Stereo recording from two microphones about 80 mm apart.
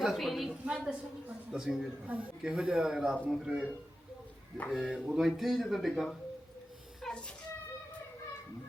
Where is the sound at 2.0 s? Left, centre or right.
Centre.